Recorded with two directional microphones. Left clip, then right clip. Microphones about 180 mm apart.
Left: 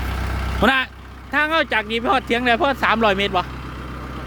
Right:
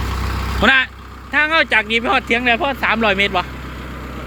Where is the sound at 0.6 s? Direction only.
25° left (ahead or behind).